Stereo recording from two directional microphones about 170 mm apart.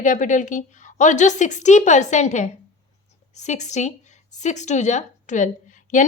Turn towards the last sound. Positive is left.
turn(degrees=45)  # may be behind; listen again after turning